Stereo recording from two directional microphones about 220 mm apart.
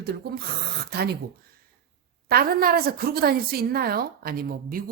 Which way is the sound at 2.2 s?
45° right (ahead or behind).